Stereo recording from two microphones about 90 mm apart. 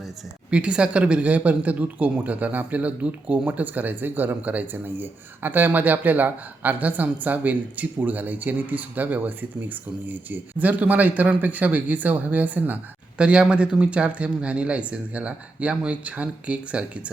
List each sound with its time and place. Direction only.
0.5 s speech: 10° right (ahead or behind)